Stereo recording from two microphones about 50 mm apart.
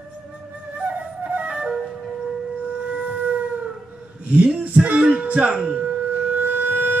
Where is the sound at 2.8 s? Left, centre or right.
Right.